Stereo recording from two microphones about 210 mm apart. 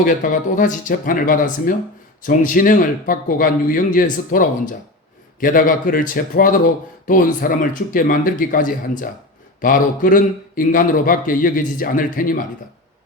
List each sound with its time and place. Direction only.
0.0 s a man's voice: 40° left (ahead or behind)